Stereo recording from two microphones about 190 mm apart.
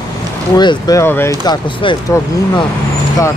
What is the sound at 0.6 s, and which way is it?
Speech, 20° left (ahead or behind).